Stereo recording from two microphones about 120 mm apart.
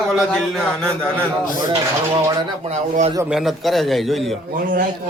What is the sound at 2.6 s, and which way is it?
Speech, 70° right (ahead or behind).